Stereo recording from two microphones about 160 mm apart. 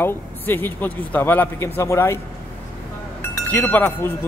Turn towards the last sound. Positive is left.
turn(degrees=15)  # may be behind; listen again after turning